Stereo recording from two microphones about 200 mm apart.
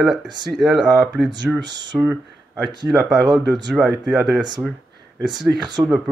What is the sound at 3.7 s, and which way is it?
Speech, centre (ahead or behind).